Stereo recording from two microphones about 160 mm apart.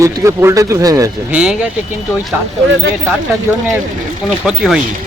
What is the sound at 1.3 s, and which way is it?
Speech, 5° right (ahead or behind).